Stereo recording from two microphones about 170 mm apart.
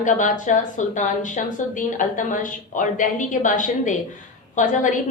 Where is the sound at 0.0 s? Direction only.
50° left (ahead or behind).